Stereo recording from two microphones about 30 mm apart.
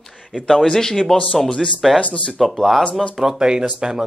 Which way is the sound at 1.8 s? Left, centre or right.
Centre.